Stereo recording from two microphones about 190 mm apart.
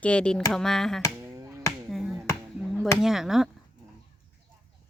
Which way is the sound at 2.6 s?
Centre (ahead or behind).